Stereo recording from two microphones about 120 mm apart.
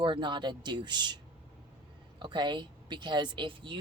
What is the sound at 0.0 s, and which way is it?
A woman's voice, 40° right (ahead or behind).